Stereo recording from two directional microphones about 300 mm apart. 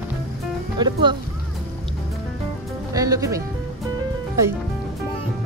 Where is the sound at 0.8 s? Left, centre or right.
Centre.